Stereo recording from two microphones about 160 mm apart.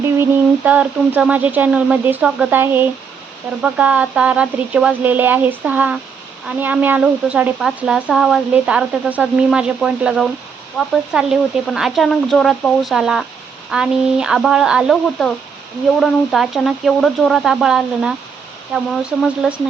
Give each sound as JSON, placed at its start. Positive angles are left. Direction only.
{"t": 0.0, "sound": "speech", "side_deg": -10}